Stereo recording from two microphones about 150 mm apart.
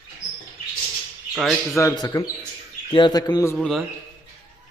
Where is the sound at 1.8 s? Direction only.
25° left (ahead or behind).